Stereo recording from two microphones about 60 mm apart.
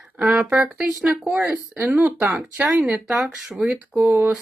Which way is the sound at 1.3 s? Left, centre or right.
Right.